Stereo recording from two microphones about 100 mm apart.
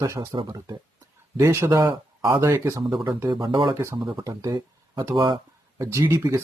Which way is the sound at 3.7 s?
25° right (ahead or behind).